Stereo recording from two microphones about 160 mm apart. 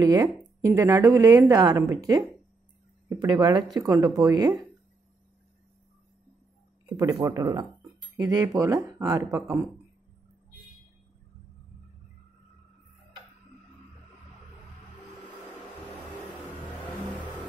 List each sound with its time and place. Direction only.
0.0 s a woman's voice: 25° right (ahead or behind)
7.2 s a woman's voice: 25° right (ahead or behind)